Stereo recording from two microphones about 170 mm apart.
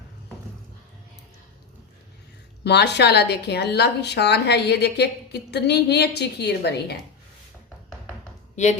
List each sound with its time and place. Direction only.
2.6 s a woman's voice: 85° left